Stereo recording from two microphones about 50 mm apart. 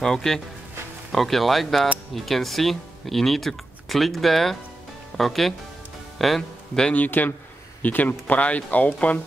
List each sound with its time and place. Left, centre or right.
0.0 s speech: centre
6.1 s music: centre
7.1 s speech: left